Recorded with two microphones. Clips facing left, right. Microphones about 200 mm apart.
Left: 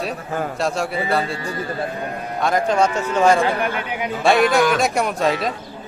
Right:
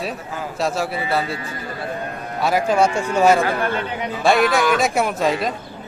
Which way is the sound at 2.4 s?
5° right (ahead or behind).